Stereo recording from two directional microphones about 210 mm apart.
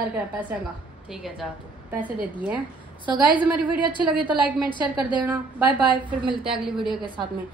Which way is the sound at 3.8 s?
20° right (ahead or behind).